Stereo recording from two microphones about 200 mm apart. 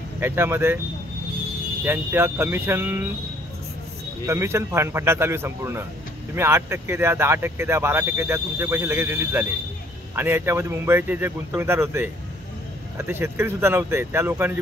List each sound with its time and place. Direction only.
0.2 s speech: 10° right (ahead or behind)
1.9 s speech: 10° right (ahead or behind)
4.3 s speech: 15° right (ahead or behind)